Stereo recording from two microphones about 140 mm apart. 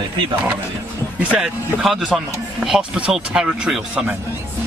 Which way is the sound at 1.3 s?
5° right (ahead or behind).